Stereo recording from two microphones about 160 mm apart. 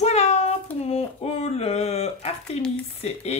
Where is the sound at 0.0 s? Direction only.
45° left (ahead or behind).